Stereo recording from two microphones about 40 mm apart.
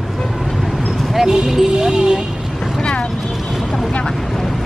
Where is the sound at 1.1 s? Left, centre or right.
Centre.